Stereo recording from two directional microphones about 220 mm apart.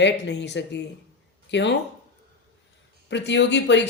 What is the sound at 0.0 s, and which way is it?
Speech, 50° left (ahead or behind).